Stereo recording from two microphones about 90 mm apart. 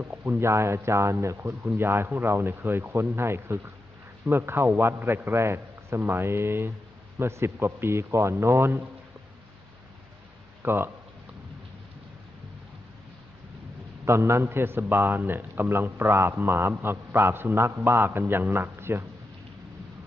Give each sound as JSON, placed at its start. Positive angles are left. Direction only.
{"t": 0.0, "sound": "speech", "side_deg": -20}
{"t": 1.5, "sound": "a man's voice", "side_deg": -20}
{"t": 10.6, "sound": "speech", "side_deg": -25}
{"t": 14.0, "sound": "a man's voice", "side_deg": -30}